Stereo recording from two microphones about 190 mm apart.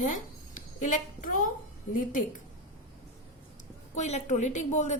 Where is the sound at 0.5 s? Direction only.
40° left (ahead or behind).